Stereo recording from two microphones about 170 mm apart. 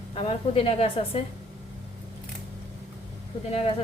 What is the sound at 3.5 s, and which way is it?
Speech, 35° left (ahead or behind).